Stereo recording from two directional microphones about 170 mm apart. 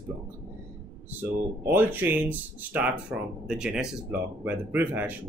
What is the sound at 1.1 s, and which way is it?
Speech, 10° right (ahead or behind).